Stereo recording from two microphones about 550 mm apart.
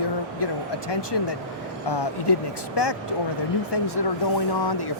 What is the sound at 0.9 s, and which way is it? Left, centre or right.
Speech, left.